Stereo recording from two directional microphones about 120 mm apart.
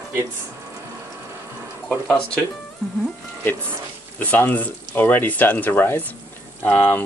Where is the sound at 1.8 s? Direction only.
5° left (ahead or behind).